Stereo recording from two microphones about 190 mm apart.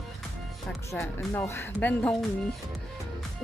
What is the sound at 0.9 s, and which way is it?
Speech, 15° left (ahead or behind).